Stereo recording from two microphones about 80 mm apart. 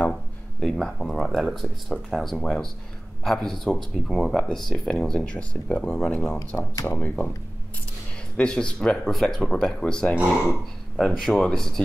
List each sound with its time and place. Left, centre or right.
0.6 s speech: centre
6.7 s speech: left
7.0 s speech: left
8.4 s speech: centre